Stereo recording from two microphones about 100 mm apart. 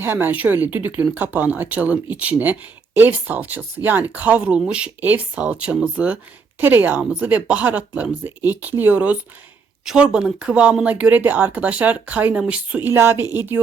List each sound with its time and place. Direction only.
0.0 s speech: 20° right (ahead or behind)
12.9 s speech: 25° right (ahead or behind)